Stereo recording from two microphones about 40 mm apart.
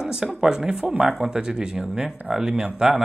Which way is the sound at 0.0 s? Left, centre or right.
Centre.